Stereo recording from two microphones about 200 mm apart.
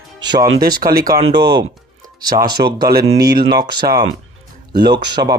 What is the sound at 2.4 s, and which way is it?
Speech, 20° right (ahead or behind).